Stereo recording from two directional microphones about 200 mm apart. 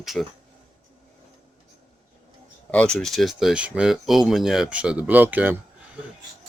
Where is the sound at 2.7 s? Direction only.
5° left (ahead or behind).